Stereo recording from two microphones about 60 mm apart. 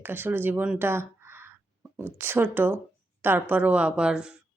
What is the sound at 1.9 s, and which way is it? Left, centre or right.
Speech, right.